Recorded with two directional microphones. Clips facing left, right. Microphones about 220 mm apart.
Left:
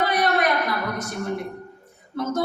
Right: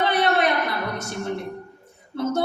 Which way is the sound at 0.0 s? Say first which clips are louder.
Right 1 dB; 25° right (ahead or behind).